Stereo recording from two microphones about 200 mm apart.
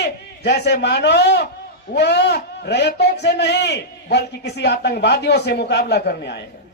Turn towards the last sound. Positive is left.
turn(degrees=55)  # may be behind; listen again after turning